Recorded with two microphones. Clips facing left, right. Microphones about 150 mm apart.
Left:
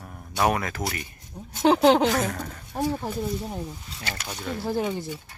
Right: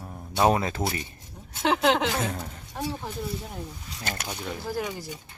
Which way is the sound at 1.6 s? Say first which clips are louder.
Left 5 dB; 35° left (ahead or behind).